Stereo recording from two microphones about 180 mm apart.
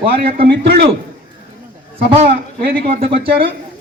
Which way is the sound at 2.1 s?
30° right (ahead or behind).